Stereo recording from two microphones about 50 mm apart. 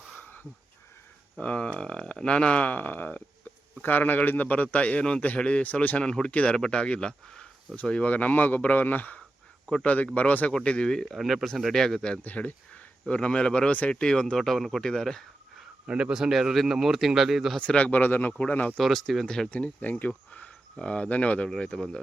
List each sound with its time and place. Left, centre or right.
0.2 s a sound: left
1.4 s speech: left
12.2 s speech: left
13.7 s speech: left
13.9 s speech: centre
14.3 s speech: centre
15.9 s speech: centre
17.6 s speech: left
18.0 s speech: left
18.8 s speech: centre
19.5 s speech: left
19.8 s speech: left
20.3 s speech: left